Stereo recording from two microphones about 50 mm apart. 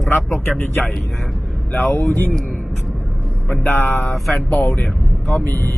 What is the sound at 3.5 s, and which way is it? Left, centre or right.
Speech, left.